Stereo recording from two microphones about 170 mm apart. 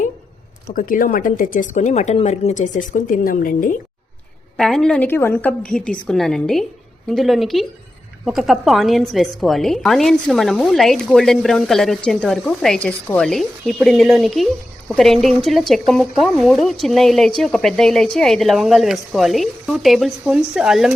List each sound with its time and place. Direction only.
0.7 s speech: 55° left (ahead or behind)
4.5 s speech: 5° left (ahead or behind)